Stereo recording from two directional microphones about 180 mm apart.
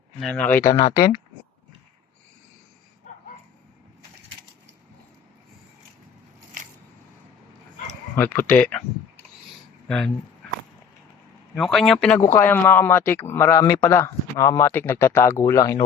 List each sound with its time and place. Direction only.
0.2 s speech: 5° left (ahead or behind)
8.1 s speech: 10° left (ahead or behind)
11.5 s a man's voice: centre (ahead or behind); by 15.8 s 15° left (ahead or behind)